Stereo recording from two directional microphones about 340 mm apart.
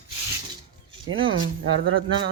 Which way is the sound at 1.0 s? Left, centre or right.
Right.